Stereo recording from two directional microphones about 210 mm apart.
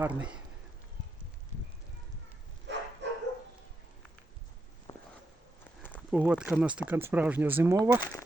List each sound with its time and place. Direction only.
0.0 s speech: 5° right (ahead or behind)
2.7 s bow-wow: 55° right (ahead or behind)
3.0 s dog: 55° right (ahead or behind)
4.9 s a sound: 15° left (ahead or behind)
6.1 s speech: 5° right (ahead or behind)